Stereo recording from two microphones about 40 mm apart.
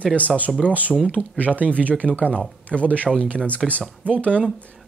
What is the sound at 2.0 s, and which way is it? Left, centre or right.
Speech, right.